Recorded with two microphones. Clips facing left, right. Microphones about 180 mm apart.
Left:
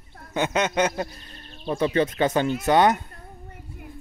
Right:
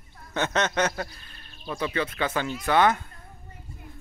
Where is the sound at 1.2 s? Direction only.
35° left (ahead or behind).